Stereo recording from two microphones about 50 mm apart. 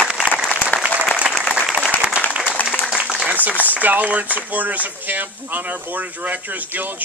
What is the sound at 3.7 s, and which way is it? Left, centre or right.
Speech, right.